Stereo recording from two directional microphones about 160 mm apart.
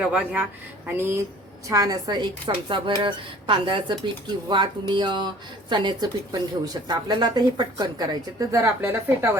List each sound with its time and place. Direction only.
0.1 s speech: 10° right (ahead or behind)